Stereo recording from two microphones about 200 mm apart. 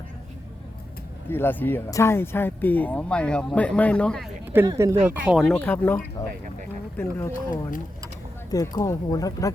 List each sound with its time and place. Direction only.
1.3 s speech: 10° left (ahead or behind)
4.5 s speech: 15° right (ahead or behind)
5.0 s speech: 5° right (ahead or behind); by 7.3 s 10° left (ahead or behind)
8.4 s speech: 20° left (ahead or behind)